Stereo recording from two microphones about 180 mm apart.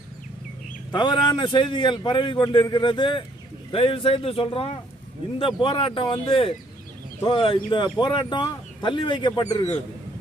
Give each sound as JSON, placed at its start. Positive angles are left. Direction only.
{"t": 0.9, "sound": "a man's voice", "side_deg": 25}